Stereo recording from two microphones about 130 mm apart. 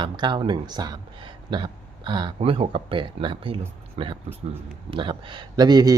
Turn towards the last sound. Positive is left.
turn(degrees=-30)  # may be behind; listen again after turning